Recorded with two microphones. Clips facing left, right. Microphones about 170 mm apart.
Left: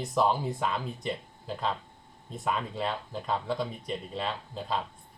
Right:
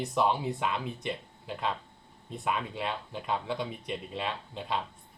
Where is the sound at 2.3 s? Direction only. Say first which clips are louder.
Left 1 dB; 5° right (ahead or behind).